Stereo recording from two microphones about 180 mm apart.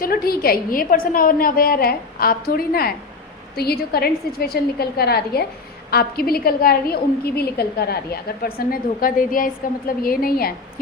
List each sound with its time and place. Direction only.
0.0 s a woman's voice: 55° left (ahead or behind)